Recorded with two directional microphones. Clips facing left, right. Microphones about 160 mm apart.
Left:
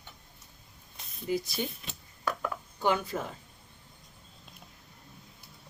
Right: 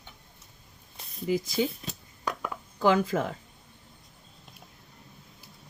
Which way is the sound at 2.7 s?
90° right.